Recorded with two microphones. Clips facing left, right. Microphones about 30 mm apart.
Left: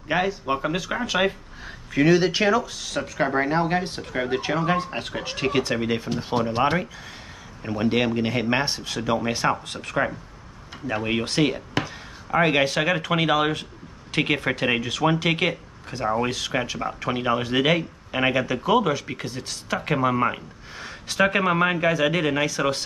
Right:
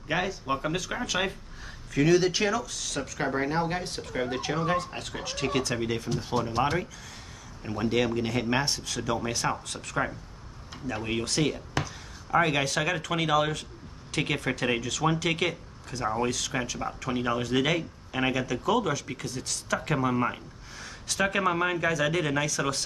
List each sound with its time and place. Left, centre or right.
0.1 s speech: centre